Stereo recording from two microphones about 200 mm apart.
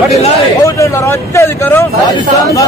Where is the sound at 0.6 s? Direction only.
15° left (ahead or behind).